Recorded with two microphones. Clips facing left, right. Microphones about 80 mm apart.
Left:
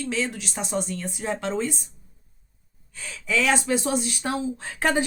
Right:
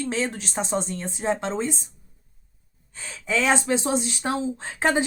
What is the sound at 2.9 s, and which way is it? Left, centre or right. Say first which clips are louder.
Speech: even; right.